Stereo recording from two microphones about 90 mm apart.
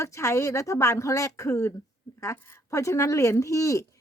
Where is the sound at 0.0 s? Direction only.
35° left (ahead or behind).